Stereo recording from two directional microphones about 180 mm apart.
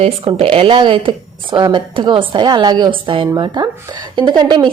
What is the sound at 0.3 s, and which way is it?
Speech, 30° right (ahead or behind).